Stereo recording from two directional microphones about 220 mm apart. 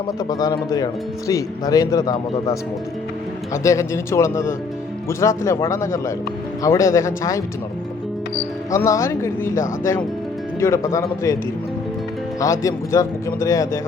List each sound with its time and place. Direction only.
0.2 s speech: 15° left (ahead or behind)
3.5 s speech: 15° left (ahead or behind)
8.7 s speech: 15° left (ahead or behind)
12.4 s speech: 15° left (ahead or behind)